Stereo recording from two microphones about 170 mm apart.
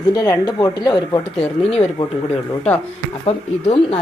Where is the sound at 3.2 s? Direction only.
35° left (ahead or behind).